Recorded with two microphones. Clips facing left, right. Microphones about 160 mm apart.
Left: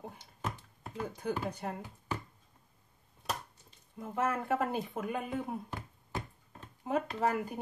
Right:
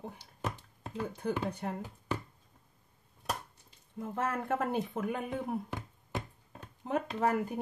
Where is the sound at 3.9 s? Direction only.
5° left (ahead or behind).